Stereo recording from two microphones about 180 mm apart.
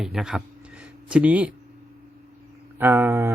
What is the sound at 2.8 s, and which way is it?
Speech, 15° right (ahead or behind).